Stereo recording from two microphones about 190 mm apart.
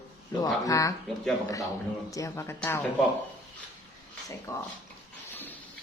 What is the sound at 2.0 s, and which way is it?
Speech, 15° left (ahead or behind).